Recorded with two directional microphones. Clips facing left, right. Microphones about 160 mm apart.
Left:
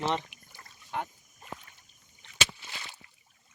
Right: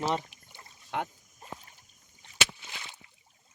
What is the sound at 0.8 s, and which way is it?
Speech, 70° right (ahead or behind).